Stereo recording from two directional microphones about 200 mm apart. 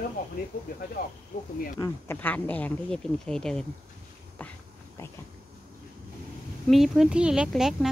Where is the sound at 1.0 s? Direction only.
50° left (ahead or behind).